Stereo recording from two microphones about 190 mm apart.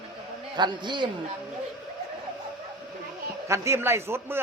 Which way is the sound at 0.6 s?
25° right (ahead or behind).